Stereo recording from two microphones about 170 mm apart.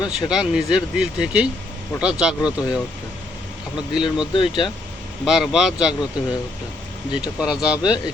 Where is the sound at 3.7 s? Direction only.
5° right (ahead or behind).